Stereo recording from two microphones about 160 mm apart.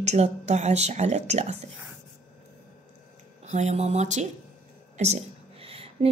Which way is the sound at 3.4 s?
45° right (ahead or behind).